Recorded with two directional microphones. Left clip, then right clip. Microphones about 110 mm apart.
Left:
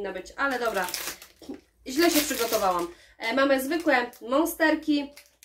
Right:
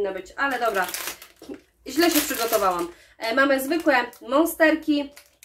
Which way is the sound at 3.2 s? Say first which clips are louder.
Right 3 dB; 25° left (ahead or behind).